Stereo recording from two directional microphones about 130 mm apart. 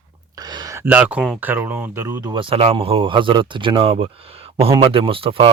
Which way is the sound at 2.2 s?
40° right (ahead or behind).